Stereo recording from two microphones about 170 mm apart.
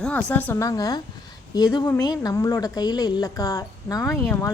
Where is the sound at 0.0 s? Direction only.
5° left (ahead or behind).